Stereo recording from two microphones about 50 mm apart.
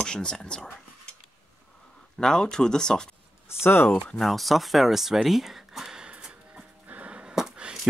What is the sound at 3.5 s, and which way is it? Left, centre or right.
Speech, left.